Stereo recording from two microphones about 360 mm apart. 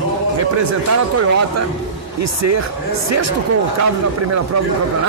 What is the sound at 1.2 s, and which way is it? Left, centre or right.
A man's voice, right.